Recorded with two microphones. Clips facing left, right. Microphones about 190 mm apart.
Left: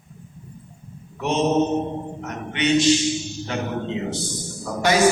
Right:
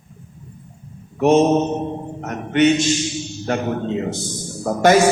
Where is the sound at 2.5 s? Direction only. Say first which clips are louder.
Right 3 dB; 50° right (ahead or behind).